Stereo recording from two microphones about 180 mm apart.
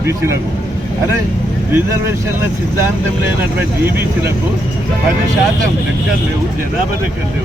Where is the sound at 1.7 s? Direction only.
15° right (ahead or behind).